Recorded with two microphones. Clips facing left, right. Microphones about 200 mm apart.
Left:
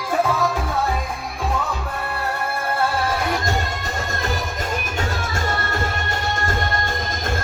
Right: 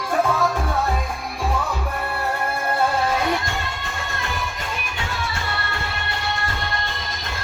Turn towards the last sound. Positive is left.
turn(degrees=45)  # may be behind; listen again after turning